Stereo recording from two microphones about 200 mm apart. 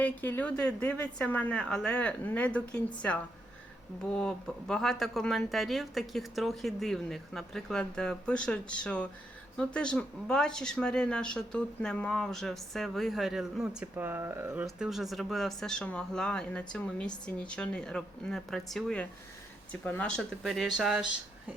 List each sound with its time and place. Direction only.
0.0 s speech: 10° left (ahead or behind)